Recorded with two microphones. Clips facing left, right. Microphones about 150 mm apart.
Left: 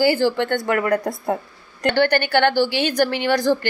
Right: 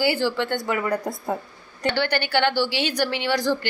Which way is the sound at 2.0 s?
50° left (ahead or behind).